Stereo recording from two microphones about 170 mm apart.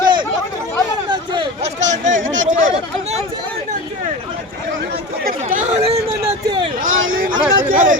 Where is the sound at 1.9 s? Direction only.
45° right (ahead or behind).